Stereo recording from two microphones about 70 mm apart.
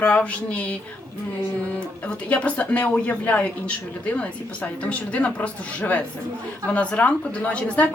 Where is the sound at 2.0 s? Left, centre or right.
Centre.